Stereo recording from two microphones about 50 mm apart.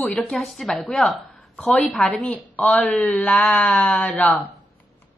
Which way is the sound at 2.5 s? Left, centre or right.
Left.